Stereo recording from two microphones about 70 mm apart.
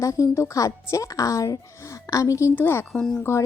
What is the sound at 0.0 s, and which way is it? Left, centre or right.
Speech, left.